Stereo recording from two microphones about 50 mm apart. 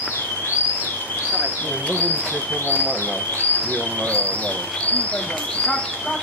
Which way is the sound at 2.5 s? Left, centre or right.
Left.